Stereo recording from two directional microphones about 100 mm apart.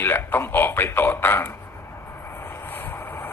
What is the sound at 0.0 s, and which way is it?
A man's voice, 20° left (ahead or behind).